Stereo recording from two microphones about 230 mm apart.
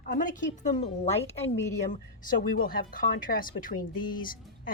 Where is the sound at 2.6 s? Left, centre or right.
Left.